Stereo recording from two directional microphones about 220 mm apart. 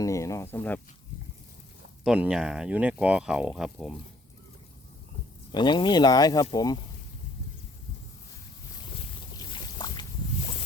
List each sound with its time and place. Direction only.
0.0 s speech: 15° left (ahead or behind)
2.0 s speech: 5° right (ahead or behind)
5.5 s speech: 20° left (ahead or behind)
9.4 s boat: 20° left (ahead or behind)